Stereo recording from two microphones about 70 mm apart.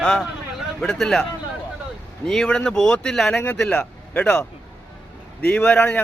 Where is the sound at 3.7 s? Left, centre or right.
Centre.